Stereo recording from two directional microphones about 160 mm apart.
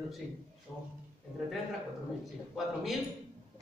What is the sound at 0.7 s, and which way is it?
Speech, 5° left (ahead or behind).